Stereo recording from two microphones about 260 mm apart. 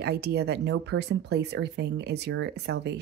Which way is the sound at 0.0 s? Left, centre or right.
Right.